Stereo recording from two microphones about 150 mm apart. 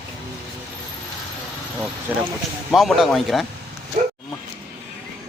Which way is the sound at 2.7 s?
Centre (ahead or behind).